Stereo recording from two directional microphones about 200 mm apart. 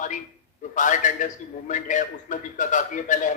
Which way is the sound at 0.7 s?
40° left (ahead or behind).